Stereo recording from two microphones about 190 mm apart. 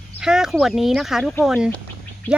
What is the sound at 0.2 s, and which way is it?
Speech, 5° right (ahead or behind).